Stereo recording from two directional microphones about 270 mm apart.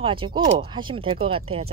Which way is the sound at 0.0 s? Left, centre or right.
Centre.